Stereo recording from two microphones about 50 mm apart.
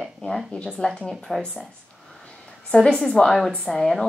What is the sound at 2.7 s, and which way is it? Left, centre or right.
A woman's voice, centre.